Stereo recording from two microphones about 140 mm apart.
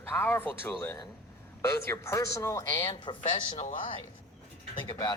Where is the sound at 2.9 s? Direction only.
35° left (ahead or behind).